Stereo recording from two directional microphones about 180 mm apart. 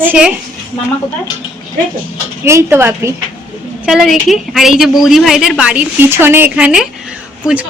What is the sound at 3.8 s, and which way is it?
A woman's voice, centre (ahead or behind).